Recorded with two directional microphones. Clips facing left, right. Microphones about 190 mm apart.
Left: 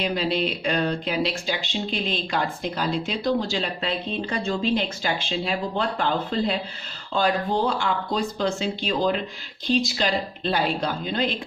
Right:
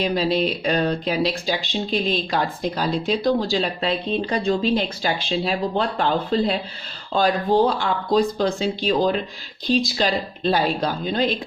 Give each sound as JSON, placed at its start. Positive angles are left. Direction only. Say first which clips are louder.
{"t": 0.0, "sound": "speech", "louder": "right 4 dB", "side_deg": -35}